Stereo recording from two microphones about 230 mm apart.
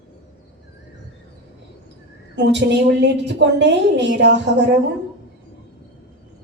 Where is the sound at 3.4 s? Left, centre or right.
Right.